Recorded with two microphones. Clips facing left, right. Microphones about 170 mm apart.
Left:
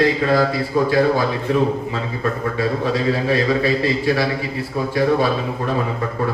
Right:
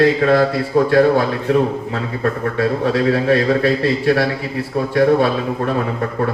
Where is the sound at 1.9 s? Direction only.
65° right (ahead or behind).